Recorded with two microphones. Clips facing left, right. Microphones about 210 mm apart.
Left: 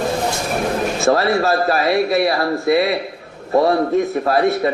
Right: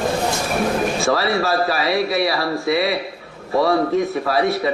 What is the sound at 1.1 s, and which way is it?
A man's voice, 50° left (ahead or behind).